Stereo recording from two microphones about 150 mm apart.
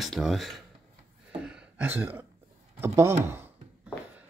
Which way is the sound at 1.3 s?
5° right (ahead or behind).